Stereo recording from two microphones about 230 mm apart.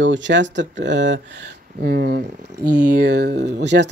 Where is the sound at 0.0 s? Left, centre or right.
Right.